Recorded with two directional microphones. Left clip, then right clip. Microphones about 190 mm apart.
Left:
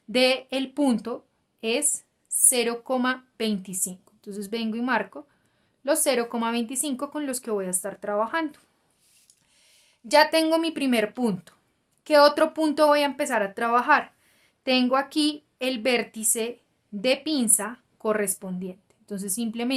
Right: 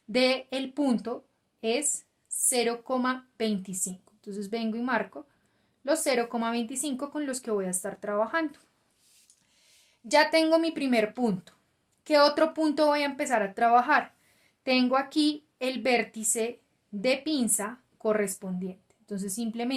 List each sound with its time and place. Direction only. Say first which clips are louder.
0.1 s a woman's voice: left 4 dB; 25° left (ahead or behind)
10.1 s a woman's voice: left 3 dB; 25° left (ahead or behind)